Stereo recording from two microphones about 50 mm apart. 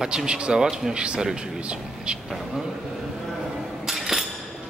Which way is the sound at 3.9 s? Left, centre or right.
Centre.